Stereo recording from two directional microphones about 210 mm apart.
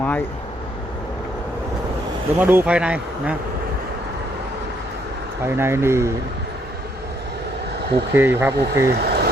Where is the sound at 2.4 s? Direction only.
10° right (ahead or behind).